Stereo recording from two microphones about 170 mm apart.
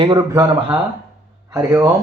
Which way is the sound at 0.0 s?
25° right (ahead or behind).